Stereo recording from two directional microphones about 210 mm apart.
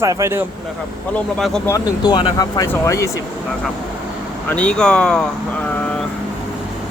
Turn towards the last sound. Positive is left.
turn(degrees=5)  # may be behind; listen again after turning